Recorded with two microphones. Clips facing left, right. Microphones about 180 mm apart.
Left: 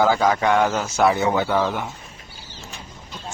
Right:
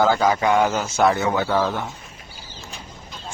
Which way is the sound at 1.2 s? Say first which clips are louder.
Left 1 dB; 20° left (ahead or behind).